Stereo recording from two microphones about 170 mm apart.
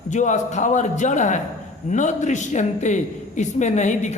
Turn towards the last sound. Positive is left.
turn(degrees=45)  # may be behind; listen again after turning